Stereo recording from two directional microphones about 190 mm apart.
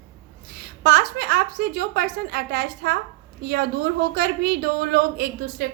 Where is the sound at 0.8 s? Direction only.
55° right (ahead or behind).